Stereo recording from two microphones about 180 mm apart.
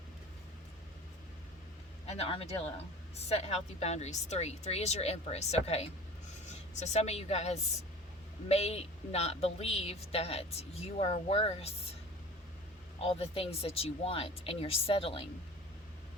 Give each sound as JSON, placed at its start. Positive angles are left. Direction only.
{"t": 2.0, "sound": "a woman's voice", "side_deg": 35}
{"t": 13.0, "sound": "a woman's voice", "side_deg": 35}